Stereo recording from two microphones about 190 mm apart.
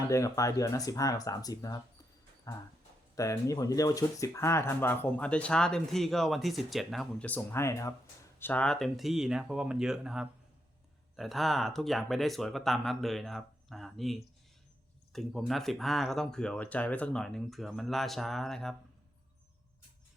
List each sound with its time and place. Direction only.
0.1 s speech: 15° left (ahead or behind)